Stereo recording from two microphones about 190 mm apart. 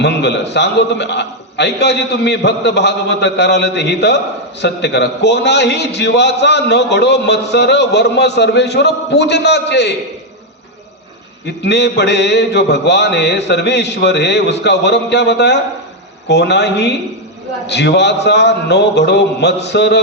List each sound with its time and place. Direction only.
0.0 s mantra: 65° left (ahead or behind)
11.6 s mantra: 65° left (ahead or behind)